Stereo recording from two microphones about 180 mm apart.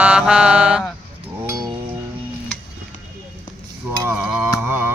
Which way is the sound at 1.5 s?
20° right (ahead or behind).